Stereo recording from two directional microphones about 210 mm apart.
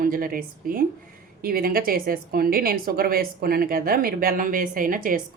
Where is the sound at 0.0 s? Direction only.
45° right (ahead or behind).